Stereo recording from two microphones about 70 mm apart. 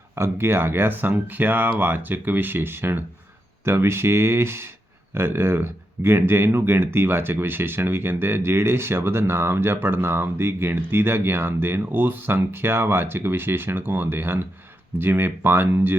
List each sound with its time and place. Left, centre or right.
0.2 s speech: right